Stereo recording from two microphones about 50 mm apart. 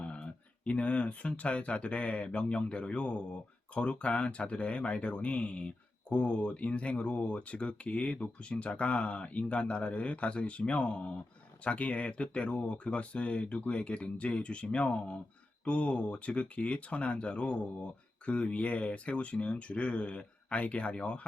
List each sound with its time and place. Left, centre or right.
0.0 s a man's voice: centre